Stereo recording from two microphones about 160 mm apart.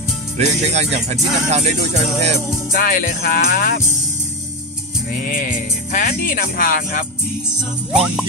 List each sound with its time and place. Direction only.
0.4 s speech: 45° right (ahead or behind)
2.7 s speech: 60° left (ahead or behind)
5.2 s speech: 55° left (ahead or behind)
7.9 s music: 5° right (ahead or behind)